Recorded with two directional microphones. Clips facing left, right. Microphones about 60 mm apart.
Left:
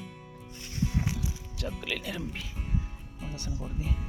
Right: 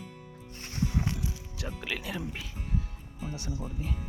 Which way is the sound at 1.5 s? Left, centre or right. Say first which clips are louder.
Left 3 dB; centre.